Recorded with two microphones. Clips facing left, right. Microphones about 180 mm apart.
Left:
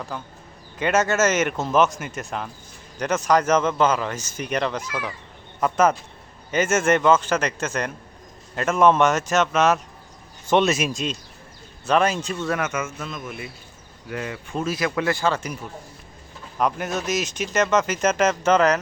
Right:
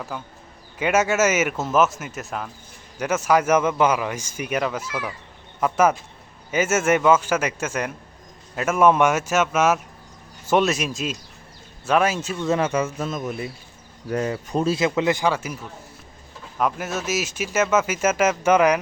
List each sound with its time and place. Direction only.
0.1 s speech: 5° right (ahead or behind)
12.5 s a man's voice: 30° right (ahead or behind); by 15.5 s 10° right (ahead or behind)
16.6 s speech: centre (ahead or behind)